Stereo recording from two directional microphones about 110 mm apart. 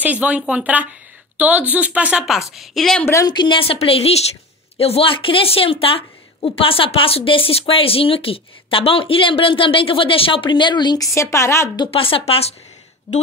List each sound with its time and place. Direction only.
0.0 s speech: 15° right (ahead or behind)
2.5 s a woman's voice: centre (ahead or behind)
3.3 s a woman's voice: 45° left (ahead or behind)
11.1 s a woman's voice: 25° left (ahead or behind)
11.9 s a woman's voice: 55° left (ahead or behind)
13.1 s speech: 50° left (ahead or behind)